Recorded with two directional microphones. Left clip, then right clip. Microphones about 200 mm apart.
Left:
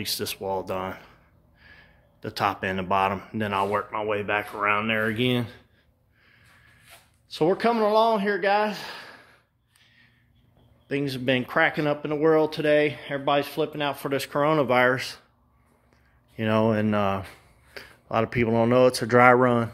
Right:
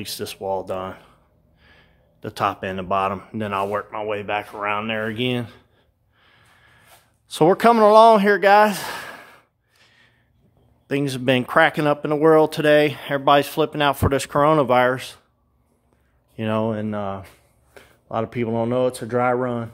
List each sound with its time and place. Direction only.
0.0 s speech: 5° right (ahead or behind)
7.2 s speech: 40° right (ahead or behind)
9.8 s snort: 25° right (ahead or behind)
10.9 s speech: 35° right (ahead or behind); by 15.2 s 5° right (ahead or behind)
16.3 s speech: 10° right (ahead or behind)
16.6 s speech: 5° left (ahead or behind)